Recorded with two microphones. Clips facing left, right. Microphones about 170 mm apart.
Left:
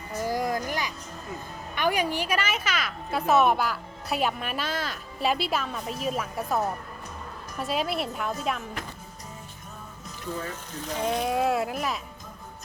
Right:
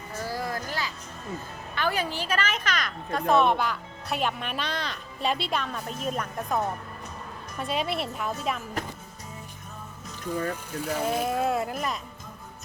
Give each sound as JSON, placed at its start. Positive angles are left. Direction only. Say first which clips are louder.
{"t": 0.3, "sound": "music", "louder": "left 5 dB", "side_deg": 15}
{"t": 1.7, "sound": "a woman's voice", "louder": "left 3 dB", "side_deg": 15}
{"t": 10.7, "sound": "speech", "louder": "left 3 dB", "side_deg": -10}